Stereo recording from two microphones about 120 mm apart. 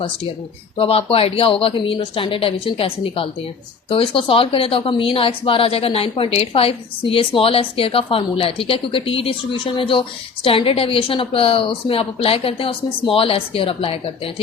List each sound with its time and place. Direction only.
0.8 s speech: 50° left (ahead or behind)